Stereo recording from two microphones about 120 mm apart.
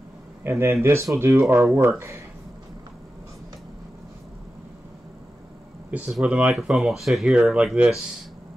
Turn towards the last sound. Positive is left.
turn(degrees=-5)  # may be behind; listen again after turning